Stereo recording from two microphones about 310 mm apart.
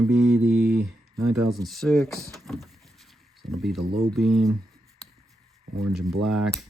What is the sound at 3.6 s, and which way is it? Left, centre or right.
Speech, centre.